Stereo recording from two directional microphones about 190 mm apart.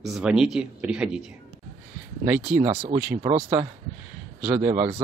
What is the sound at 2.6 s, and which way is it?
Speech, 30° right (ahead or behind).